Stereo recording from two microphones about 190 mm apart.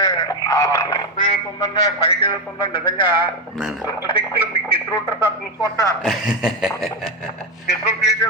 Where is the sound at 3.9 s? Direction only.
25° left (ahead or behind).